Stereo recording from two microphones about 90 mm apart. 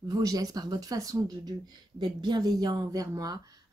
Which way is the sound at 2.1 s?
55° right (ahead or behind).